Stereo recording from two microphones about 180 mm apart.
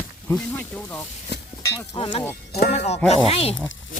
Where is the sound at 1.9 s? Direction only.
30° left (ahead or behind).